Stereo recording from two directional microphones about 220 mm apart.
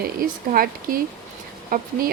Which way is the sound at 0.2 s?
40° right (ahead or behind).